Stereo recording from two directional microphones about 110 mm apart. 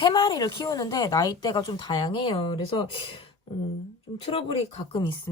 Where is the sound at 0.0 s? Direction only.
40° left (ahead or behind).